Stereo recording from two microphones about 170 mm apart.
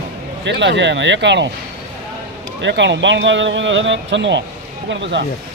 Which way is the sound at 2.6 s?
90° right.